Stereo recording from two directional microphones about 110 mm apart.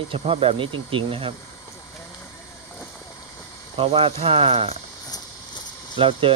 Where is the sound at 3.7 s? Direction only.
60° right (ahead or behind).